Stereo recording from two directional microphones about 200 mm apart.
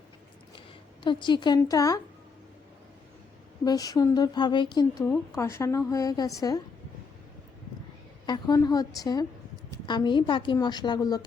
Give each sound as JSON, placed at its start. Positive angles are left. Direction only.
{"t": 1.0, "sound": "speech", "side_deg": 25}
{"t": 3.6, "sound": "a woman's voice", "side_deg": 20}
{"t": 8.3, "sound": "a woman's voice", "side_deg": 20}